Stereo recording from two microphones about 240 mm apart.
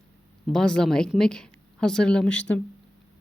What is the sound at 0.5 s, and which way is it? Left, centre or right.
Speech, centre.